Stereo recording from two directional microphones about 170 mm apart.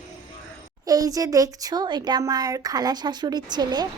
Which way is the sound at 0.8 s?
20° right (ahead or behind).